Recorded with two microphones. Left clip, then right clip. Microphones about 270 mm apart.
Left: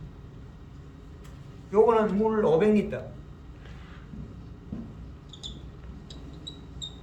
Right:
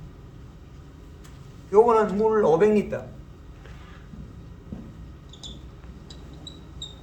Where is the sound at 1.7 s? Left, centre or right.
Right.